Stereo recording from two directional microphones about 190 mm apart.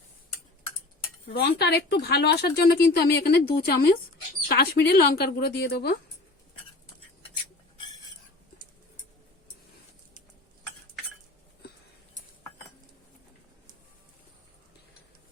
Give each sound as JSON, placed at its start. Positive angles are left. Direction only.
{"t": 1.3, "sound": "a woman's voice", "side_deg": 55}